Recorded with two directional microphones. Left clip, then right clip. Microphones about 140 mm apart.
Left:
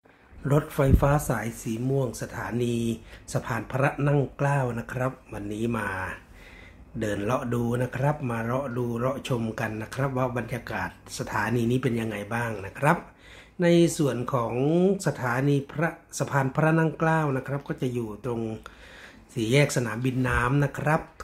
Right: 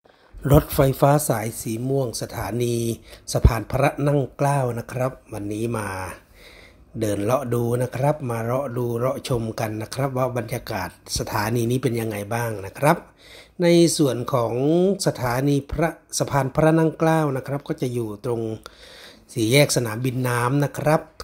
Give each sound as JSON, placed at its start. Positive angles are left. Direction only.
{"t": 0.4, "sound": "speech", "side_deg": -50}
{"t": 19.3, "sound": "speech", "side_deg": -45}